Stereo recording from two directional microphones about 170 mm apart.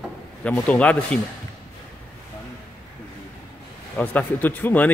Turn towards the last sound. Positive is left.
turn(degrees=10)  # may be behind; listen again after turning